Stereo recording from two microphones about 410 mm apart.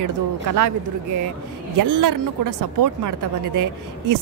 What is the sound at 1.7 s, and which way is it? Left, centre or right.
A woman's voice, right.